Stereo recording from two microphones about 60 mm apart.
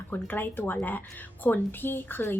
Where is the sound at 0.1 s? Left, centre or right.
Left.